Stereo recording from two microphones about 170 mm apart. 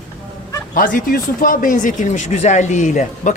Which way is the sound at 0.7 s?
55° left (ahead or behind).